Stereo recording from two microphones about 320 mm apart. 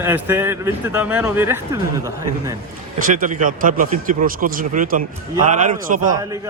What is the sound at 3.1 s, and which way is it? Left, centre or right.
Speech, right.